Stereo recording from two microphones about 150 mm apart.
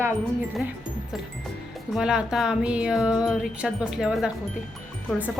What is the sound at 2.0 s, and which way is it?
Speech, 5° right (ahead or behind).